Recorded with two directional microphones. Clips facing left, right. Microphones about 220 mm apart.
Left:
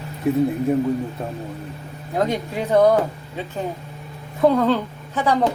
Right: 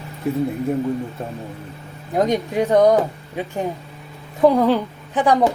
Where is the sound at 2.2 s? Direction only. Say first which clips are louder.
Right 4 dB; 15° right (ahead or behind).